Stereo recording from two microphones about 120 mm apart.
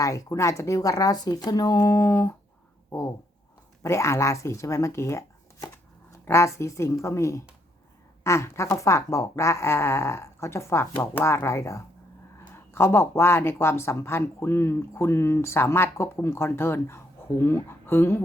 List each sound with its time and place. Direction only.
0.0 s speech: 25° left (ahead or behind)
3.8 s speech: 25° left (ahead or behind)